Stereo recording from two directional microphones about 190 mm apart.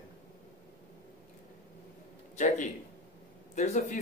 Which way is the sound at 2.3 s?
40° left (ahead or behind).